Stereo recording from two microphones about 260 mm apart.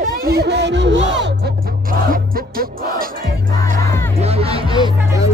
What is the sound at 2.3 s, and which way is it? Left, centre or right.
Music, right.